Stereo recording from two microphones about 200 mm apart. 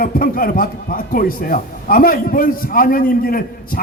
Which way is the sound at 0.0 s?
45° left (ahead or behind).